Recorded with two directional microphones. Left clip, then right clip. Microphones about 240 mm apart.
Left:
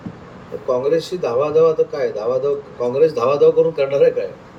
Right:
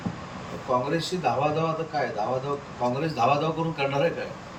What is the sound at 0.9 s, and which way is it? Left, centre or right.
Speech, centre.